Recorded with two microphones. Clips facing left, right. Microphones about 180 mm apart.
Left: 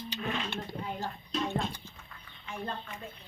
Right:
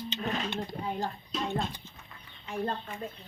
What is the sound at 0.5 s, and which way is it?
Speech, 15° right (ahead or behind).